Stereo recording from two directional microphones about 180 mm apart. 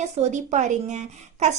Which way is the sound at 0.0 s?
40° right (ahead or behind).